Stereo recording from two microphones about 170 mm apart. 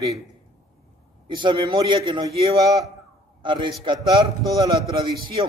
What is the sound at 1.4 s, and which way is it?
Speech, 30° right (ahead or behind).